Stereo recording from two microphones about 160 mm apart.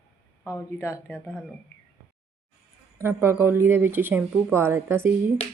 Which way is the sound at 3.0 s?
15° right (ahead or behind).